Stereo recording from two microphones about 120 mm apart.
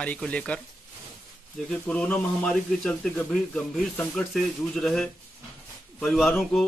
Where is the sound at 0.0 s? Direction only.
10° left (ahead or behind).